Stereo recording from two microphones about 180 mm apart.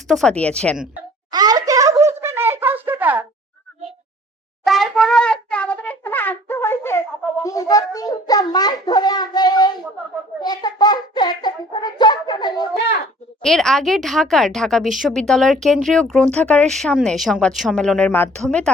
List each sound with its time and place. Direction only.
0.1 s speech: 5° left (ahead or behind)
1.3 s a sound: 20° right (ahead or behind)
4.6 s wind instrument: centre (ahead or behind)
7.4 s a child's voice: 20° left (ahead or behind)
13.4 s speech: centre (ahead or behind)